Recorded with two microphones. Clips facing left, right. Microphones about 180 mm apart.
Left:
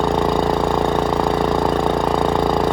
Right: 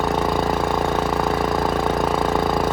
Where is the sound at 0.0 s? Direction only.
5° right (ahead or behind).